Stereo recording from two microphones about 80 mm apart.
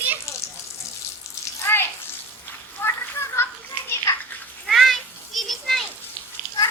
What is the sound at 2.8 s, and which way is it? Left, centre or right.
Children playing, left.